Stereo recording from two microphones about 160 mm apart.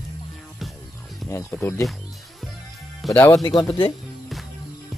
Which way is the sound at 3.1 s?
20° left (ahead or behind).